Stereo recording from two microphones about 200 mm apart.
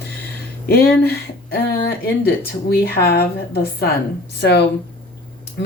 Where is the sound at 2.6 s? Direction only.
50° left (ahead or behind).